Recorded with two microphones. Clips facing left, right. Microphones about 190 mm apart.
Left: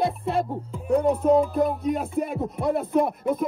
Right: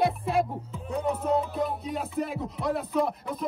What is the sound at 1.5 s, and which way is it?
Speech, 50° left (ahead or behind).